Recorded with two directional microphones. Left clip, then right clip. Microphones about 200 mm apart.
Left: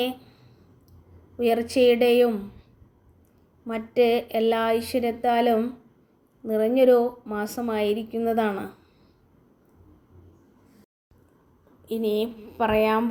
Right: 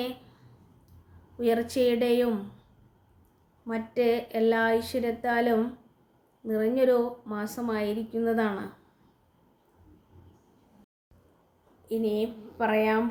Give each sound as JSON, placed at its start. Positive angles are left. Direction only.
{"t": 1.4, "sound": "a woman's voice", "side_deg": 20}
{"t": 3.7, "sound": "a woman's voice", "side_deg": 20}
{"t": 11.9, "sound": "a woman's voice", "side_deg": 20}